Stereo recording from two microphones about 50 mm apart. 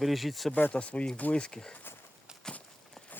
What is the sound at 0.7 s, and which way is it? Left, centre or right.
Speech, left.